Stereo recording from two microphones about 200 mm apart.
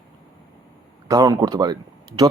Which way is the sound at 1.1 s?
20° right (ahead or behind).